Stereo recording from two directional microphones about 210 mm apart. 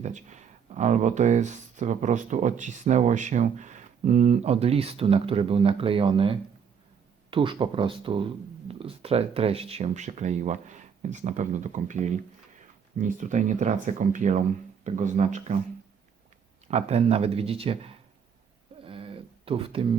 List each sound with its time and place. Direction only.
0.0 s speech: 35° right (ahead or behind)
16.6 s speech: 30° right (ahead or behind)
18.9 s a sound: 25° right (ahead or behind)